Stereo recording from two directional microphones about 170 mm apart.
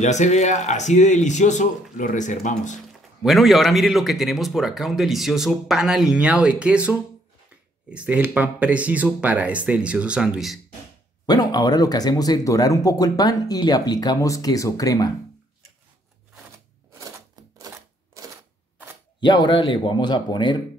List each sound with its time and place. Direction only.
0.0 s speech: 45° left (ahead or behind)
3.2 s speech: centre (ahead or behind)
11.2 s speech: 25° left (ahead or behind)
17.4 s typewriter: 20° right (ahead or behind)
18.2 s camera: 20° right (ahead or behind)
19.2 s speech: 25° left (ahead or behind)